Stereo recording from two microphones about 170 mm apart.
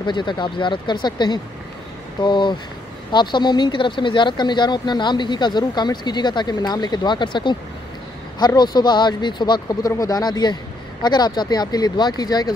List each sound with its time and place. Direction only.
0.0 s speech: 25° left (ahead or behind)